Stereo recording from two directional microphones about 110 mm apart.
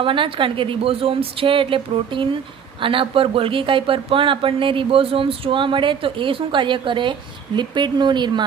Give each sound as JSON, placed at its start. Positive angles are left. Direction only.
{"t": 0.0, "sound": "speech", "side_deg": -50}